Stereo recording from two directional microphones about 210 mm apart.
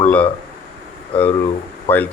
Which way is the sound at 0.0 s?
5° left (ahead or behind).